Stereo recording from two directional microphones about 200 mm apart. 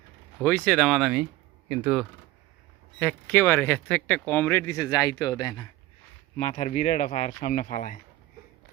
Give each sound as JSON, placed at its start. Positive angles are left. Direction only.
{"t": 0.4, "sound": "speech", "side_deg": 5}
{"t": 3.0, "sound": "speech", "side_deg": 10}
{"t": 6.3, "sound": "speech", "side_deg": 35}